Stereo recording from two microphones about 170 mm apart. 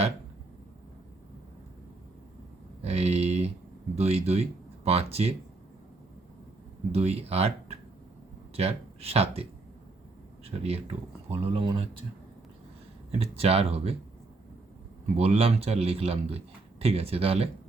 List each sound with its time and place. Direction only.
2.8 s a man's voice: 35° right (ahead or behind)
6.9 s a man's voice: 40° right (ahead or behind)
13.1 s a man's voice: 35° right (ahead or behind)
15.1 s a man's voice: 35° right (ahead or behind)